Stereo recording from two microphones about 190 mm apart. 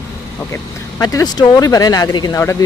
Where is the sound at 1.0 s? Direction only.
20° left (ahead or behind).